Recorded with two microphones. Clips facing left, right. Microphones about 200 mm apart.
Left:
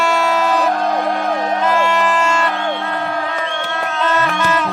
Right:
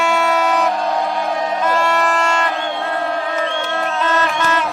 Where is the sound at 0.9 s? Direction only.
55° left (ahead or behind).